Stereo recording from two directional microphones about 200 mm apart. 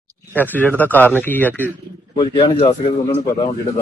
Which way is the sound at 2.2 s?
25° left (ahead or behind).